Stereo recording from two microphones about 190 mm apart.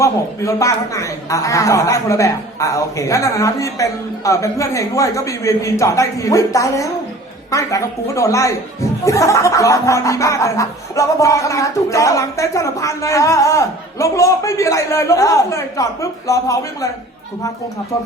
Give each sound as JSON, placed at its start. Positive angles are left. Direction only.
{"t": 0.0, "sound": "speech", "side_deg": 15}